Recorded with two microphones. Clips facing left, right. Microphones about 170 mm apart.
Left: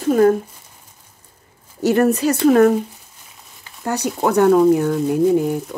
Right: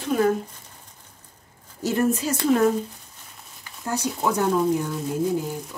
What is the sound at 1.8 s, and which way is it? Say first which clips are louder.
Speech: left 7 dB; 70° left (ahead or behind).